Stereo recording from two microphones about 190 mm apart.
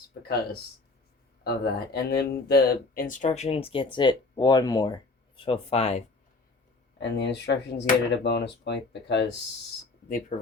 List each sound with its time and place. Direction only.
1.5 s speech: 55° left (ahead or behind); by 4.9 s 20° left (ahead or behind)
5.5 s speech: 30° left (ahead or behind)
7.0 s speech: 65° left (ahead or behind)
10.1 s speech: 45° left (ahead or behind)